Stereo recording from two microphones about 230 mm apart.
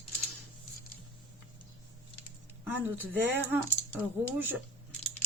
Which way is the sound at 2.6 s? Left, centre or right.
Centre.